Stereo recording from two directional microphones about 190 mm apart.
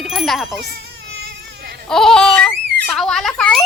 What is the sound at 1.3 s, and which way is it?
Baby cry, 60° right (ahead or behind).